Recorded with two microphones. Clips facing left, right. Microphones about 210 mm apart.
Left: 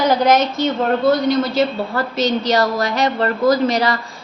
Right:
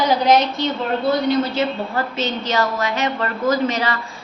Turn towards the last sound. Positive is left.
turn(degrees=35)  # may be behind; listen again after turning